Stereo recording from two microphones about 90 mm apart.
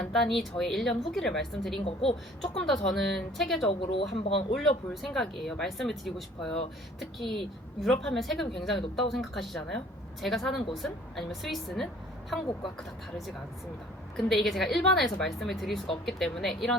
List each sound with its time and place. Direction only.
0.0 s speech: 5° left (ahead or behind)
3.7 s speech: 90° left
4.5 s speech: 5° left (ahead or behind)
14.2 s speech: 5° left (ahead or behind)